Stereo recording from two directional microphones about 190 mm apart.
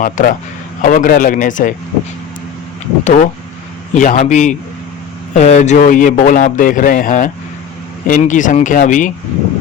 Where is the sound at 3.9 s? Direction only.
40° left (ahead or behind).